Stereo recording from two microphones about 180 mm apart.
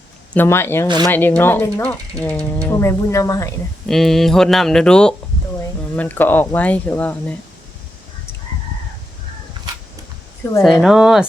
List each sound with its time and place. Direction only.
0.3 s speech: 15° left (ahead or behind)
0.9 s speech: 25° right (ahead or behind)
1.1 s speech: 10° left (ahead or behind)
3.8 s speech: centre (ahead or behind)
10.6 s speech: centre (ahead or behind)